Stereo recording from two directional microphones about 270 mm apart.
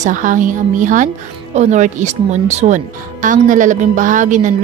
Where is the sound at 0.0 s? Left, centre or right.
Right.